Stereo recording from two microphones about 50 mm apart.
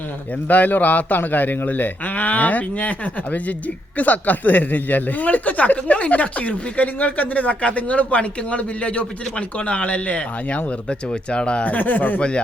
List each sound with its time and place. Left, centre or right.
0.4 s speech: left